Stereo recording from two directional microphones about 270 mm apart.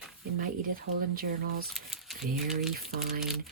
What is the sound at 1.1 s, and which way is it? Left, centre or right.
Speech, right.